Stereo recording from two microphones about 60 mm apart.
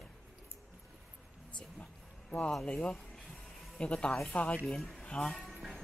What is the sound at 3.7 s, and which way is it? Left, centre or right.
Speech, centre.